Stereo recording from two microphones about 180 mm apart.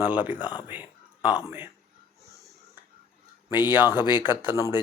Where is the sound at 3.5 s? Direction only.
10° right (ahead or behind).